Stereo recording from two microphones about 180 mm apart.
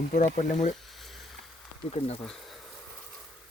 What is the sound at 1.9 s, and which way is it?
Speech, 35° left (ahead or behind).